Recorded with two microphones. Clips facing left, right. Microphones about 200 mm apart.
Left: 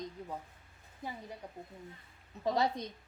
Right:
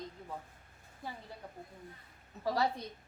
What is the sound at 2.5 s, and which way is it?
Speech, 20° left (ahead or behind).